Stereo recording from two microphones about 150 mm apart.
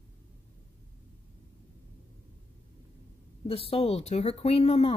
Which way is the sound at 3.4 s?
40° left (ahead or behind).